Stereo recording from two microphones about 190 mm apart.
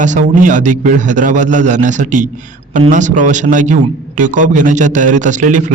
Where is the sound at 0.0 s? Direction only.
40° right (ahead or behind).